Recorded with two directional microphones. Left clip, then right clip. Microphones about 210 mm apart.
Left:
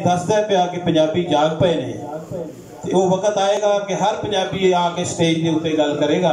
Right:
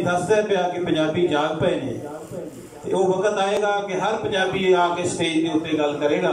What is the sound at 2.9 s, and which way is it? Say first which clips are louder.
A man's voice: left 3 dB; 25° left (ahead or behind).